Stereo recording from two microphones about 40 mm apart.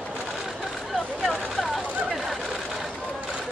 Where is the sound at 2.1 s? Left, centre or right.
Centre.